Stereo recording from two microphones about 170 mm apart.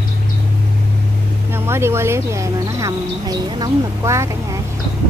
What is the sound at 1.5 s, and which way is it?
Speech, 15° right (ahead or behind).